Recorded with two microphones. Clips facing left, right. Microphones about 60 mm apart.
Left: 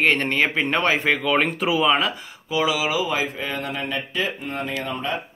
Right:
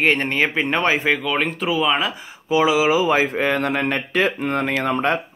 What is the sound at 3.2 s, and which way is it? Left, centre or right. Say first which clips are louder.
Speech: right 8 dB; right.